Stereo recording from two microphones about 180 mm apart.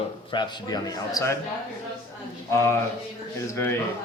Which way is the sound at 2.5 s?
15° left (ahead or behind).